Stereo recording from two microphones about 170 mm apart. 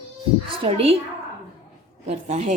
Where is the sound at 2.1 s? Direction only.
40° right (ahead or behind).